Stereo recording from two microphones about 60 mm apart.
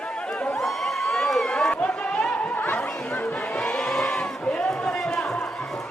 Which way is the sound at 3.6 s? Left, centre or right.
Centre.